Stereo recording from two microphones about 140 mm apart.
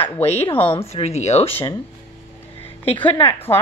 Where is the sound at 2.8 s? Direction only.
40° left (ahead or behind).